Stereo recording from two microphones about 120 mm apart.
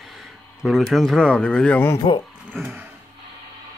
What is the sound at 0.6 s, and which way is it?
Speech, centre (ahead or behind).